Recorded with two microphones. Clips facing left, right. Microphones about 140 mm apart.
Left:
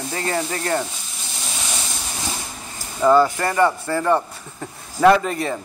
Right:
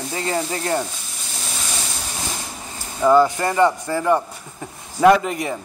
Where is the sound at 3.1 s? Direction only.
20° right (ahead or behind).